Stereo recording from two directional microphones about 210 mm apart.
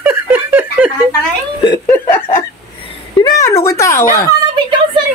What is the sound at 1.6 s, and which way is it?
Speech, 10° left (ahead or behind).